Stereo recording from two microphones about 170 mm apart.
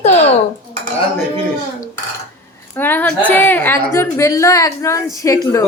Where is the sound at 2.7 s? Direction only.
10° left (ahead or behind).